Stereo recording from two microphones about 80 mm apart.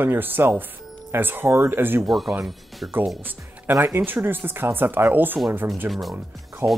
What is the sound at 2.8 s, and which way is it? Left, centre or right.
Speech, right.